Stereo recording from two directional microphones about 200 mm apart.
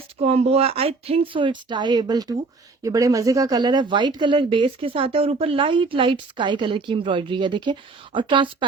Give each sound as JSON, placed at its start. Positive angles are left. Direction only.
{"t": 0.2, "sound": "speech", "side_deg": -30}